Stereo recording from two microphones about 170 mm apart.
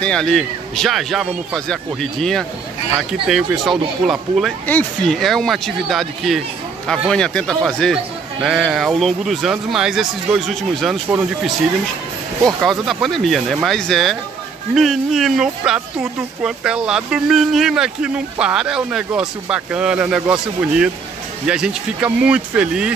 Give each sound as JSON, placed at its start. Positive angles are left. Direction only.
{"t": 0.0, "sound": "speech", "side_deg": 5}
{"t": 12.4, "sound": "speech", "side_deg": 0}